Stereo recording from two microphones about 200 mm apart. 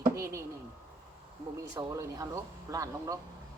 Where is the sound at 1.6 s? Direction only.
15° right (ahead or behind).